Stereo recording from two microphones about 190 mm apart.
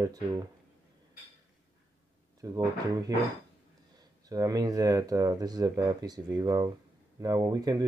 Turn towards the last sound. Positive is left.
turn(degrees=-20)  # may be behind; listen again after turning